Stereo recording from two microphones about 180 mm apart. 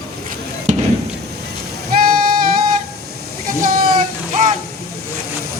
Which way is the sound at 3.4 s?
50° right (ahead or behind).